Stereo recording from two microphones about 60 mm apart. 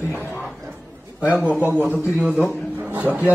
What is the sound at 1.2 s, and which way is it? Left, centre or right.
Speech, right.